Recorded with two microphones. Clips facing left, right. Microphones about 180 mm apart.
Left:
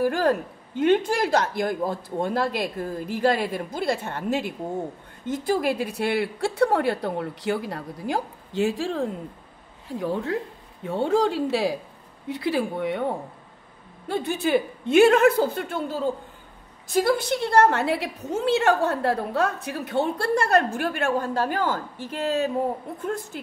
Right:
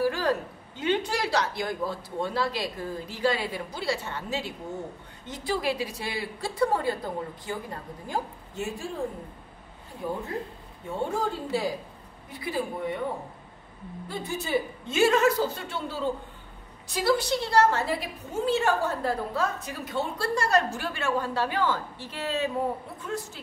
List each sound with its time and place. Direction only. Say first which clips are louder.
0.0 s a woman's voice: left 4 dB; 50° left (ahead or behind)